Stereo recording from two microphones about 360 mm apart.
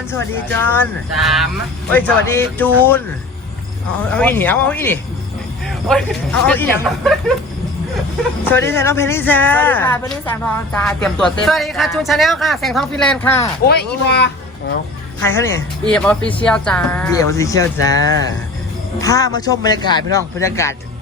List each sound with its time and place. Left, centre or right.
0.6 s speech: centre
4.1 s speech: centre
8.4 s a man's voice: centre
13.7 s speech: left
15.2 s a man's voice: centre